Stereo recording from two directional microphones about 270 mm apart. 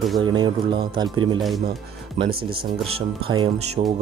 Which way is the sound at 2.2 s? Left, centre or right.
Right.